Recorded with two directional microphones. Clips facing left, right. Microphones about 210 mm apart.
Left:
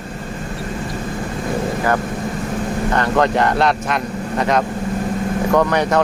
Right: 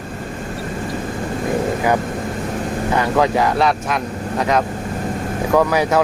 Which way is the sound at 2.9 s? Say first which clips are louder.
Even; 5° right (ahead or behind).